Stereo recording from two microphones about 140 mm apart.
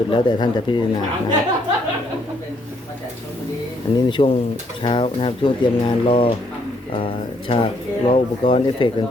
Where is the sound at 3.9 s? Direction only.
40° left (ahead or behind).